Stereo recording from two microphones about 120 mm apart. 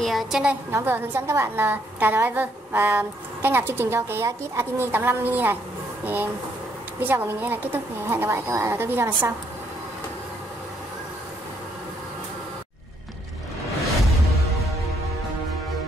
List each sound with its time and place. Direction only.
0.0 s a woman's voice: centre (ahead or behind); by 5.6 s 15° right (ahead or behind)
7.0 s a woman's voice: 15° right (ahead or behind)